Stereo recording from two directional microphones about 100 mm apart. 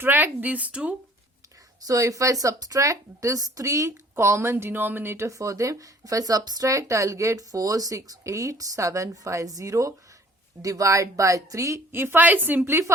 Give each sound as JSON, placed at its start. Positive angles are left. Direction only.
{"t": 0.0, "sound": "a woman's voice", "side_deg": -20}
{"t": 1.8, "sound": "speech", "side_deg": -35}